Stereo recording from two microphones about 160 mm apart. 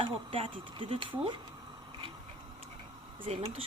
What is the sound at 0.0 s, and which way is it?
Speech, 30° right (ahead or behind).